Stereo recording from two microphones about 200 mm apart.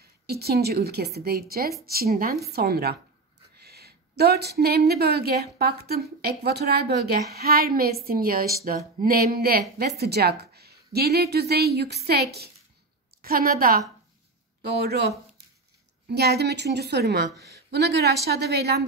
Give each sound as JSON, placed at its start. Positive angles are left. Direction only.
{"t": 0.3, "sound": "a woman's voice", "side_deg": -50}